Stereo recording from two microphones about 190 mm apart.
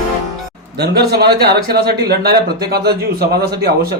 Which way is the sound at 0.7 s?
55° right (ahead or behind).